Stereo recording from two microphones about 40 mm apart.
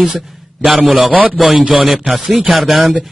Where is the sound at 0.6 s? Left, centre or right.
Right.